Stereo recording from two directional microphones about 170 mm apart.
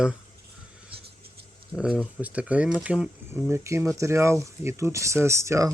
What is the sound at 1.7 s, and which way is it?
Speech, 5° right (ahead or behind).